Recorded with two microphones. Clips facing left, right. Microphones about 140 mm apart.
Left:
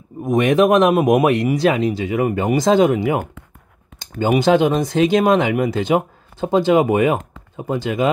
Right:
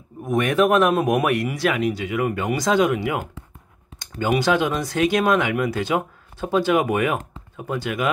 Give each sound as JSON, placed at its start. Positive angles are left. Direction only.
{"t": 0.2, "sound": "speech", "side_deg": 20}
{"t": 4.2, "sound": "speech", "side_deg": 25}